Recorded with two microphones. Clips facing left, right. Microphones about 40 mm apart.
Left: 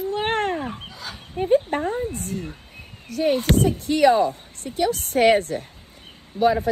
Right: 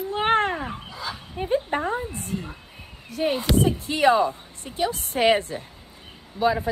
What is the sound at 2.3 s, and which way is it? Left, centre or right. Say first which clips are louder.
Speech: left 1 dB; right.